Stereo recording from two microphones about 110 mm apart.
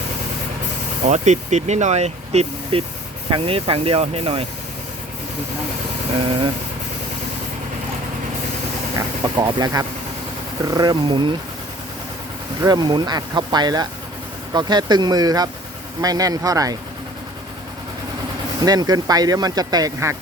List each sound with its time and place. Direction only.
1.0 s speech: 90° right
3.2 s speech: 55° right (ahead or behind)
9.0 s speech: 35° right (ahead or behind)
12.6 s speech: 40° right (ahead or behind)
18.6 s speech: 35° right (ahead or behind)